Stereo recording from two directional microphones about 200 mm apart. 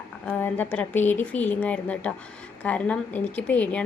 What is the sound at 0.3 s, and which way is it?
A woman's voice, 10° left (ahead or behind).